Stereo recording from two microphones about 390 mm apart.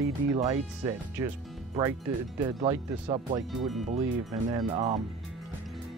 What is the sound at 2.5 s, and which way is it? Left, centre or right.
Speech, centre.